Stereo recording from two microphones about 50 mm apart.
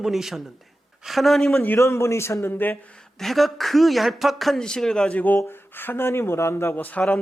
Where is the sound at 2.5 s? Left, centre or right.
Left.